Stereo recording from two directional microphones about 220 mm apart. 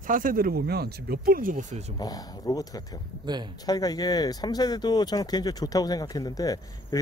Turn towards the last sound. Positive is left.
turn(degrees=15)  # may be behind; listen again after turning